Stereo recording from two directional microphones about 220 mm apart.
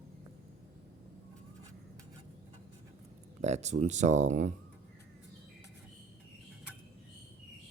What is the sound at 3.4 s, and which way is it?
Speech, 30° right (ahead or behind).